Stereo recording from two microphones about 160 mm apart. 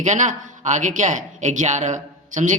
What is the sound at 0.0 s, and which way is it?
Speech, 50° right (ahead or behind).